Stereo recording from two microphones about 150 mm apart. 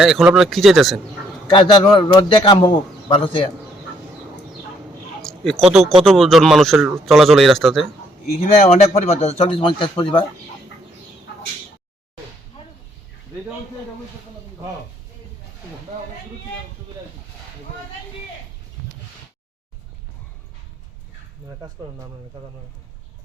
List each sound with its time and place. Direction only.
0.0 s speech: centre (ahead or behind)
1.5 s a man's voice: 30° left (ahead or behind)
5.2 s a sound: 5° left (ahead or behind)
5.8 s speech: 40° right (ahead or behind)
6.1 s speech: centre (ahead or behind)
8.4 s a man's voice: 50° left (ahead or behind)